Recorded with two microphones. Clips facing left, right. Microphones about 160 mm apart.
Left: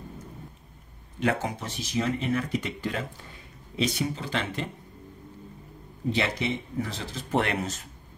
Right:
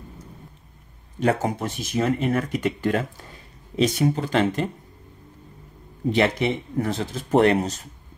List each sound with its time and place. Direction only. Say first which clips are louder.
1.2 s speech: right 5 dB; 45° right (ahead or behind)
4.0 s speech: right 9 dB; 50° right (ahead or behind)
6.1 s speech: right 8 dB; 55° right (ahead or behind); by 7.8 s 35° right (ahead or behind)